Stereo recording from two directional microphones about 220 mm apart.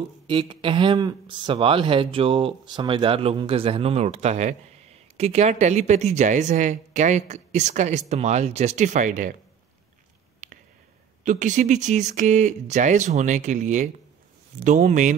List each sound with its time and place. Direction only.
0.3 s speech: 20° right (ahead or behind)
10.4 s a sound: 35° right (ahead or behind)
11.2 s speech: 35° right (ahead or behind)